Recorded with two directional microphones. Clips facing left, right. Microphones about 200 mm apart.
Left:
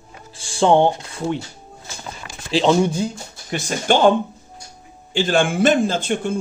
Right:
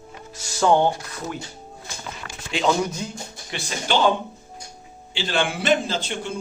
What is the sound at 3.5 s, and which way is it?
Speech, 50° left (ahead or behind).